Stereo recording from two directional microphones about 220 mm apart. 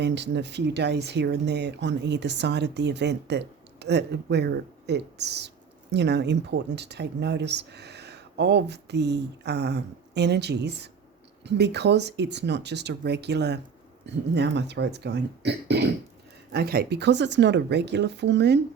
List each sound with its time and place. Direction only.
0.0 s speech: 50° right (ahead or behind)